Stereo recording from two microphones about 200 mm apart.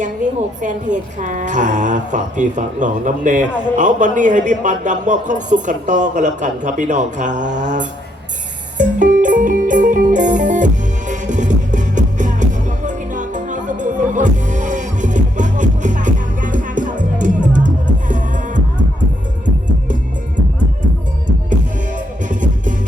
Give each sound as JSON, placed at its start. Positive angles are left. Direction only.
{"t": 0.6, "sound": "a woman's voice", "side_deg": -40}
{"t": 8.8, "sound": "music", "side_deg": -40}
{"t": 21.5, "sound": "music", "side_deg": -40}